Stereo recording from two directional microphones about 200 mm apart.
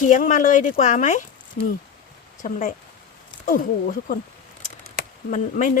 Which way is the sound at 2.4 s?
40° left (ahead or behind).